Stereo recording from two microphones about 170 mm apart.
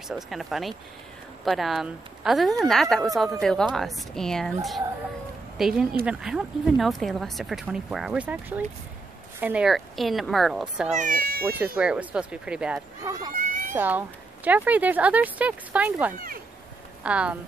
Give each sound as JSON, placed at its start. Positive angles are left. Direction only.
{"t": 0.1, "sound": "speech", "side_deg": 0}
{"t": 5.6, "sound": "speech", "side_deg": -5}
{"t": 11.0, "sound": "speech", "side_deg": -55}
{"t": 11.5, "sound": "speech", "side_deg": -10}
{"t": 13.0, "sound": "speech", "side_deg": -20}
{"t": 13.3, "sound": "cat", "side_deg": -55}
{"t": 13.7, "sound": "a woman's voice", "side_deg": -10}